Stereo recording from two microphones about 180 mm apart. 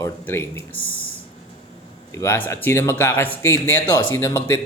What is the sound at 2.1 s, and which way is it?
Speech, 15° left (ahead or behind).